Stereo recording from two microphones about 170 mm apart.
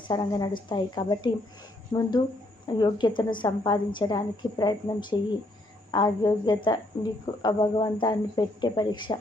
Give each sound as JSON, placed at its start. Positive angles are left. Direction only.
{"t": 0.1, "sound": "a woman's voice", "side_deg": 25}